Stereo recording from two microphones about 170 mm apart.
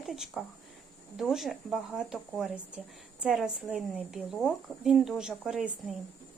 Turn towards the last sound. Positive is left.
turn(degrees=-5)  # may be behind; listen again after turning